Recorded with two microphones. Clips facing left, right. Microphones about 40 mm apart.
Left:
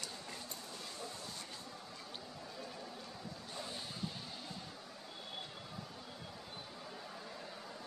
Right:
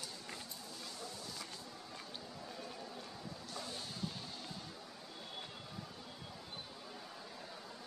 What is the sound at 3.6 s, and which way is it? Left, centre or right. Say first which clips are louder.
Music: even; centre.